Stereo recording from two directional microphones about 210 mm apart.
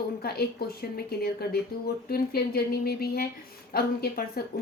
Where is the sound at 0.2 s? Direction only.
45° left (ahead or behind).